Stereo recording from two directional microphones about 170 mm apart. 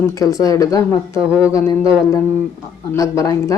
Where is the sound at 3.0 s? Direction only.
20° left (ahead or behind).